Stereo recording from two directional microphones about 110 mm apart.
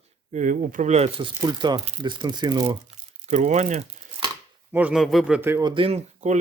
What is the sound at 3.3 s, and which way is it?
Speech, 90° right.